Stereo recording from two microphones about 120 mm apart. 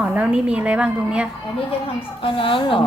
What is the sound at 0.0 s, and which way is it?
A woman's voice, 10° right (ahead or behind).